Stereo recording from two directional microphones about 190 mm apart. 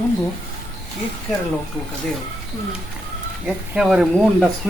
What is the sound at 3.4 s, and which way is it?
A man's voice, 5° right (ahead or behind).